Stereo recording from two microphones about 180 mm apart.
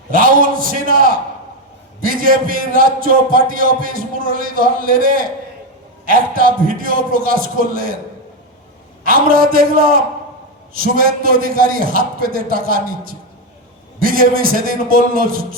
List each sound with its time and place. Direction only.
0.1 s a man's voice: 50° right (ahead or behind)
9.0 s a man's voice: 55° right (ahead or behind)